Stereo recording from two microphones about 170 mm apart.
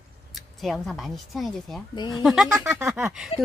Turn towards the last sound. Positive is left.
turn(degrees=35)  # may be behind; listen again after turning